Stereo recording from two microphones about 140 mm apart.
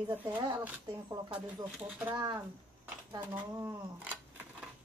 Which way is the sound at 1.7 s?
5° right (ahead or behind).